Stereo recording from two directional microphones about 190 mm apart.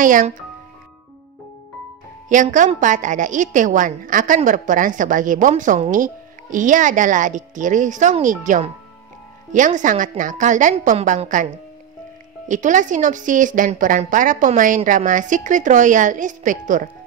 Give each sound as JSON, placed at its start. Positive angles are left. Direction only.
{"t": 0.0, "sound": "a woman's voice", "side_deg": -45}
{"t": 2.2, "sound": "a woman's voice", "side_deg": -40}
{"t": 12.4, "sound": "a woman's voice", "side_deg": -40}